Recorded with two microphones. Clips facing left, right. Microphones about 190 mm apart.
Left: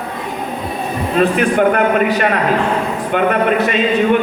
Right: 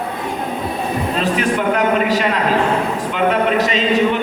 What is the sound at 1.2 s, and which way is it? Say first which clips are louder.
A man's voice: left 7 dB; 55° left (ahead or behind).